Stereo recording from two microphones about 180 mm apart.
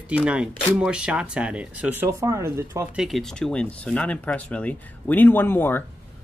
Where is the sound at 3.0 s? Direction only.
Centre (ahead or behind).